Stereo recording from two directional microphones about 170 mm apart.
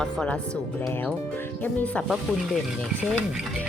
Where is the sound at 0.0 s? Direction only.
5° left (ahead or behind).